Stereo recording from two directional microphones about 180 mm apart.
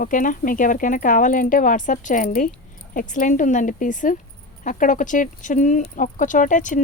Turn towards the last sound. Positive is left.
turn(degrees=45)  # may be behind; listen again after turning